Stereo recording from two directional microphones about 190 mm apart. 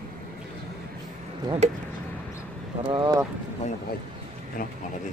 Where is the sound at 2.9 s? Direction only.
25° right (ahead or behind).